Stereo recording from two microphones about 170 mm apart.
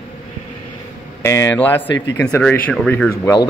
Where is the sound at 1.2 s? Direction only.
15° left (ahead or behind).